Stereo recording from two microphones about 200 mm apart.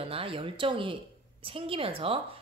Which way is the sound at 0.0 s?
30° right (ahead or behind).